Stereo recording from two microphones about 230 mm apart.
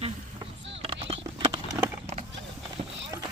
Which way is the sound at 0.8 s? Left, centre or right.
Right.